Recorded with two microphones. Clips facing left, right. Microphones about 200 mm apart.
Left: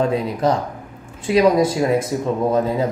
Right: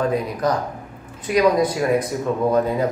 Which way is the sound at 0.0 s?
25° left (ahead or behind).